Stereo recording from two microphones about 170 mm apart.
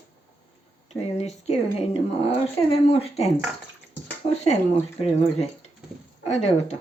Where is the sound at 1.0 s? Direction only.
40° left (ahead or behind).